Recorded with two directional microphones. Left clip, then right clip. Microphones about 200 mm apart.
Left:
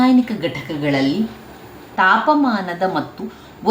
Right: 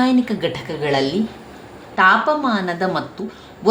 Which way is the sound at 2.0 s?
30° right (ahead or behind).